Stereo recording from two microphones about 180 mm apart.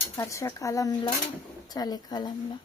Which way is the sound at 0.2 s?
15° left (ahead or behind).